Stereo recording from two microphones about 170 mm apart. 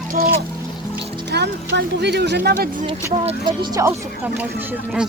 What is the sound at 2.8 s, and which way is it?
Speech, 30° right (ahead or behind).